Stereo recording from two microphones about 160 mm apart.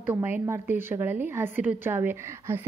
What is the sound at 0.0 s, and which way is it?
A woman's voice, 10° right (ahead or behind).